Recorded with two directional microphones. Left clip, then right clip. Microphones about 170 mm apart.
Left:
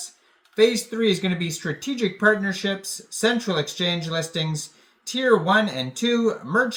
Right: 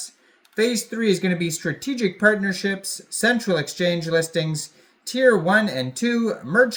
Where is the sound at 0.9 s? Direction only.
5° right (ahead or behind).